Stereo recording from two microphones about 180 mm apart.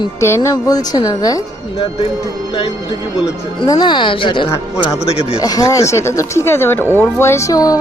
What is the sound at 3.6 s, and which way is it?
Speech, 25° left (ahead or behind).